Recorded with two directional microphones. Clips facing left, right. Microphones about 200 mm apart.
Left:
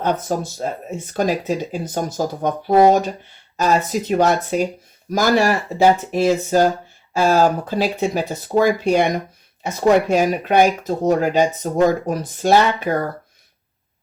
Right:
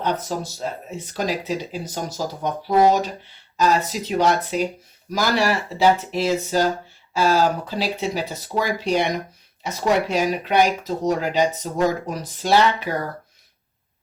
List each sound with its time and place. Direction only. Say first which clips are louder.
0.0 s speech: left 4 dB; 50° left (ahead or behind)